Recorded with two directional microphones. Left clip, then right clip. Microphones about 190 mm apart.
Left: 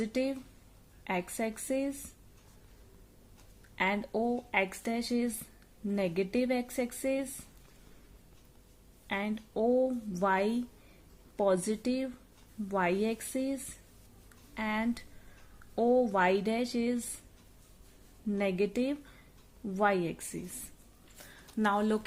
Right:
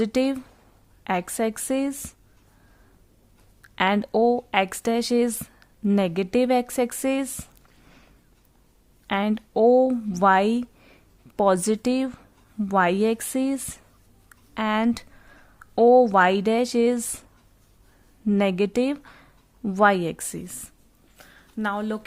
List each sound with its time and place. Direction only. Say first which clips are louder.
0.0 s speech: right 10 dB; 50° right (ahead or behind)
3.8 s speech: right 10 dB; 45° right (ahead or behind)
9.0 s speech: right 10 dB; 45° right (ahead or behind)
18.3 s speech: right 9 dB; 45° right (ahead or behind)
21.2 s a sound: right 2 dB; 25° right (ahead or behind)